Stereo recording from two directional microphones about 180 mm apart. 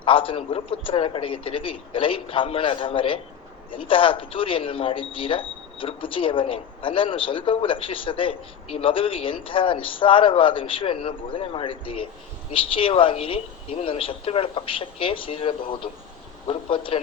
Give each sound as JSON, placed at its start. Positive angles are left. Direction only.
{"t": 0.0, "sound": "speech", "side_deg": 30}